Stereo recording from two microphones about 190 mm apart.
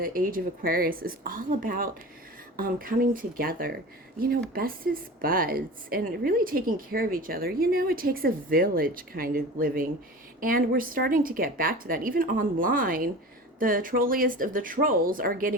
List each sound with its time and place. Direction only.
0.0 s a woman's voice: 50° right (ahead or behind)